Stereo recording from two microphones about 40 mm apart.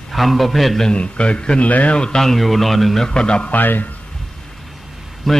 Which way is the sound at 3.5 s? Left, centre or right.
Left.